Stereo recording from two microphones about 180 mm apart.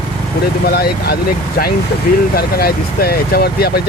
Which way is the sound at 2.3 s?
60° left (ahead or behind).